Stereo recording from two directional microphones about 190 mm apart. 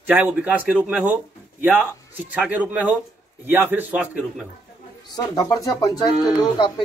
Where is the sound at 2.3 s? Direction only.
5° right (ahead or behind).